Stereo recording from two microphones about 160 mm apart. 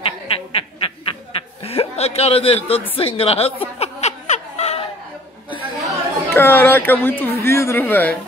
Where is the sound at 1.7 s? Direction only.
40° left (ahead or behind).